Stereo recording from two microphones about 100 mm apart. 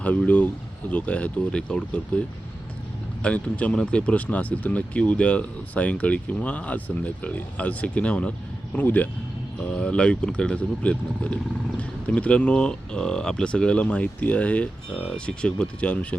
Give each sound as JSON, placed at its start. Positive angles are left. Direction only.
{"t": 0.0, "sound": "speech", "side_deg": 15}
{"t": 3.2, "sound": "speech", "side_deg": 15}